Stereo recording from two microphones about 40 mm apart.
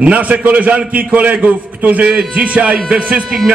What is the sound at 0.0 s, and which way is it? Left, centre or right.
A man's voice, right.